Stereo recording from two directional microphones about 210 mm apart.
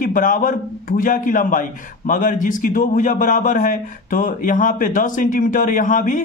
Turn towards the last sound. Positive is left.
turn(degrees=40)  # may be behind; listen again after turning